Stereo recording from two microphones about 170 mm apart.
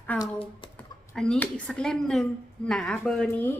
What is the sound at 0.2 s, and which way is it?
Speech, 30° left (ahead or behind).